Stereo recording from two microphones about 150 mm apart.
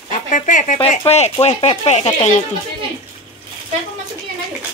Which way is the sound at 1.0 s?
45° left (ahead or behind).